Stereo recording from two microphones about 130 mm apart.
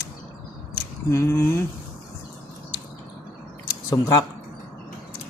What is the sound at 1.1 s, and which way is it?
Speech, 20° left (ahead or behind).